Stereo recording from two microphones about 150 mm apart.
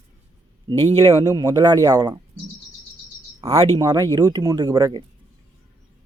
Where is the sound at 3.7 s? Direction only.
25° right (ahead or behind).